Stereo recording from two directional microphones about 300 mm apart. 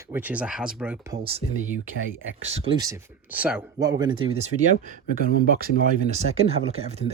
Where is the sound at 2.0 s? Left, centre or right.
Right.